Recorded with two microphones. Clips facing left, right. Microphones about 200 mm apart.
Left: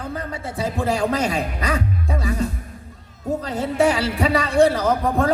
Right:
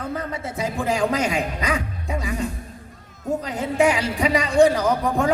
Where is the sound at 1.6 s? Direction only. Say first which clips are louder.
Left 2 dB; 35° left (ahead or behind).